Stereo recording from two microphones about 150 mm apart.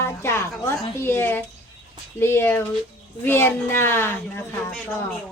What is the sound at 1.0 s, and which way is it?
A woman's voice, 15° left (ahead or behind).